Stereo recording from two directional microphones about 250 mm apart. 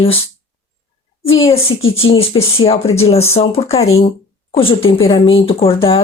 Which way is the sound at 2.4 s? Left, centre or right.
Left.